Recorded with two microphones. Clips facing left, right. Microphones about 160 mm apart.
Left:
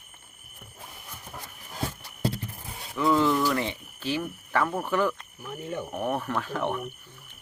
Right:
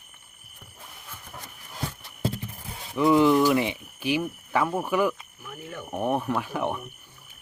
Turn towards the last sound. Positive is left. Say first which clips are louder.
# right 1 dB
turn(degrees=-10)  # may be behind; listen again after turning